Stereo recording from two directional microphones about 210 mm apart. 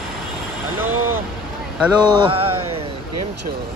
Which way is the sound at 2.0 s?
20° right (ahead or behind).